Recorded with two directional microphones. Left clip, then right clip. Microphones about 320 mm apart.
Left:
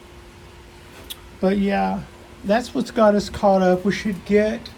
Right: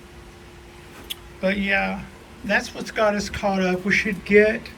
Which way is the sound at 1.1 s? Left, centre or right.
Centre.